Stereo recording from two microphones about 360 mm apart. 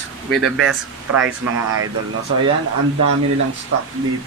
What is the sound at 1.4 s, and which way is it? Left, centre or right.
Speech, right.